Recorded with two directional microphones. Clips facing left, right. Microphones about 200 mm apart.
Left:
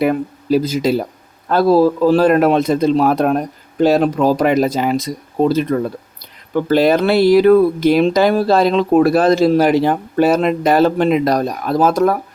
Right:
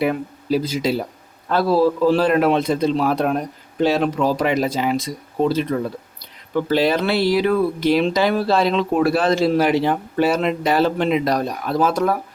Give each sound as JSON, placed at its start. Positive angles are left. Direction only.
{"t": 0.0, "sound": "speech", "side_deg": 45}